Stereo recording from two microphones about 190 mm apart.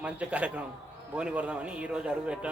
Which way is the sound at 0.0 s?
5° right (ahead or behind).